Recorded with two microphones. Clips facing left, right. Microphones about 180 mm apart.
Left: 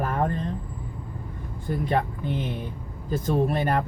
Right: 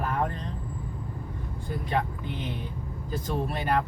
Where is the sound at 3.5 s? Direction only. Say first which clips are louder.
Left 3 dB; 50° left (ahead or behind).